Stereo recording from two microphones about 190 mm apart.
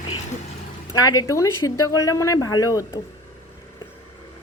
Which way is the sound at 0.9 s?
20° left (ahead or behind).